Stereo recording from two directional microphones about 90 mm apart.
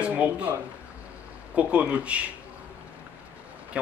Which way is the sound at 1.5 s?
15° right (ahead or behind).